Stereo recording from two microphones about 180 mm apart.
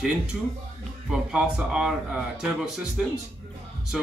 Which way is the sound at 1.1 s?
5° right (ahead or behind).